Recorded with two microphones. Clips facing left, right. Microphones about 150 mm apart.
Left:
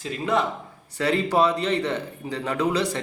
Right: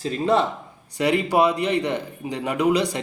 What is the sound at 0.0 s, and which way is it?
Speech, 30° right (ahead or behind).